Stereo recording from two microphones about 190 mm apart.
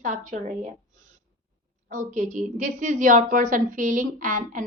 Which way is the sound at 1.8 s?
40° right (ahead or behind).